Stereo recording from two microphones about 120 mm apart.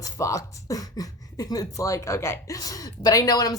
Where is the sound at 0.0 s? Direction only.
25° left (ahead or behind).